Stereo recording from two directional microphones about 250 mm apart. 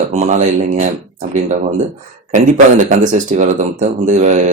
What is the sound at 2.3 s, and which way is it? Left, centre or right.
Speech, right.